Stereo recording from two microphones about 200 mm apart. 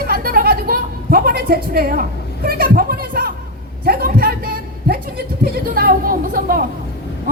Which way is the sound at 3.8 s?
50° right (ahead or behind).